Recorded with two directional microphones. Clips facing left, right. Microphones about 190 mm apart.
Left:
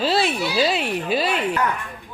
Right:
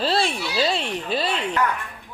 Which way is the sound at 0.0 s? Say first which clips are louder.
Left 2 dB; 5° left (ahead or behind).